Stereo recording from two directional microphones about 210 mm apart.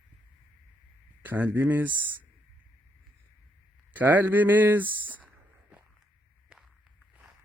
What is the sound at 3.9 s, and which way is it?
Speech, 10° right (ahead or behind).